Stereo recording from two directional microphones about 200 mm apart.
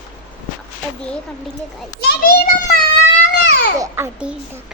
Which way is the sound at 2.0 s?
50° left (ahead or behind).